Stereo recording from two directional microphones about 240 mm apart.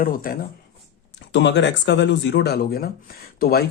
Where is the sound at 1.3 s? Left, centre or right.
Left.